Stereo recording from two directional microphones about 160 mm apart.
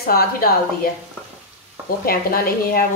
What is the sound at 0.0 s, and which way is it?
Speech, 70° left (ahead or behind).